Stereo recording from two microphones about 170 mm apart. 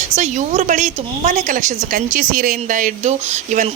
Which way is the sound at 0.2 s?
45° right (ahead or behind).